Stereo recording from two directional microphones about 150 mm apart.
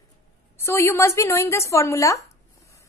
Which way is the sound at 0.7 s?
15° left (ahead or behind).